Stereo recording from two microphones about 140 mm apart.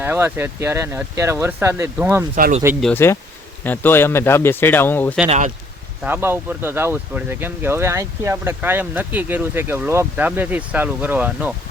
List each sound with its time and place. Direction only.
0.0 s speech: 15° right (ahead or behind)
2.3 s speech: 65° right (ahead or behind)
2.9 s speech: 20° left (ahead or behind)
6.0 s speech: 15° right (ahead or behind)